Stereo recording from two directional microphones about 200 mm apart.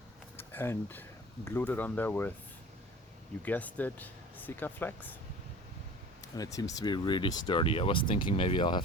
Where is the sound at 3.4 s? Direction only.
10° left (ahead or behind).